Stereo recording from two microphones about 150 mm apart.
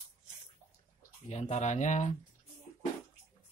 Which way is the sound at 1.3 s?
50° left (ahead or behind).